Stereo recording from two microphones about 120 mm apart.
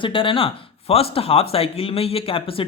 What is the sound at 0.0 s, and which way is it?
Speech, 45° left (ahead or behind).